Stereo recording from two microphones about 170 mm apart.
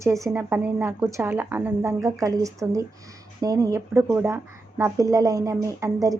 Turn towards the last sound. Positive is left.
turn(degrees=-20)  # may be behind; listen again after turning